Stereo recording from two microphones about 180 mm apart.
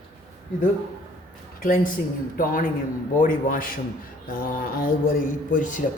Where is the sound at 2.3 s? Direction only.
50° left (ahead or behind).